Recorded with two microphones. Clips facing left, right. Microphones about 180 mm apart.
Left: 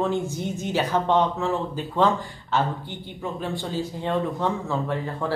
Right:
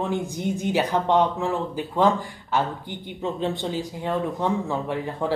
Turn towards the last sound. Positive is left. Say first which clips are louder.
# right 1 dB
turn(degrees=-15)  # may be behind; listen again after turning